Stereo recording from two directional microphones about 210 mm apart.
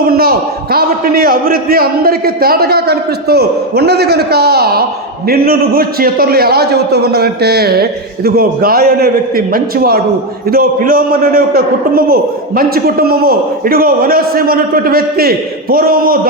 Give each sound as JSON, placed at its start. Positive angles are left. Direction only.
{"t": 0.0, "sound": "a man's voice", "side_deg": -45}